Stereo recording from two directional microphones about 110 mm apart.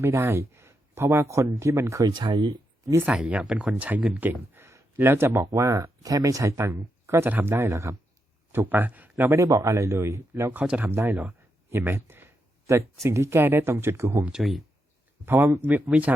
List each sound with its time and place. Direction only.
0.0 s speech: 25° right (ahead or behind)
2.0 s speech: 45° right (ahead or behind)
3.0 s speech: 10° right (ahead or behind); by 14.3 s 25° right (ahead or behind)
14.3 s speech: 5° right (ahead or behind)
15.3 s speech: 20° right (ahead or behind)